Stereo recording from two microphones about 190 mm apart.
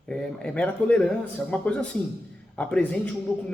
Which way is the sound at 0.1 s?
5° left (ahead or behind).